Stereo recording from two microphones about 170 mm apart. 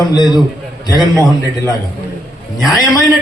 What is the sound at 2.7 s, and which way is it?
Speech, 20° left (ahead or behind).